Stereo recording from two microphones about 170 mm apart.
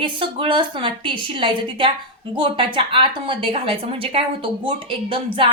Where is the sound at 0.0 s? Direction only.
30° right (ahead or behind).